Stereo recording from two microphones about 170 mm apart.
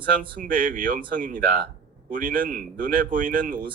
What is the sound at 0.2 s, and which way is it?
Speech, 50° right (ahead or behind).